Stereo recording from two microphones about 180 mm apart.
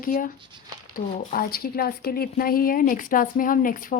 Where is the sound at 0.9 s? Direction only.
55° left (ahead or behind).